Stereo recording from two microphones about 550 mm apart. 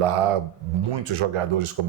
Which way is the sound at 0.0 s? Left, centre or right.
Right.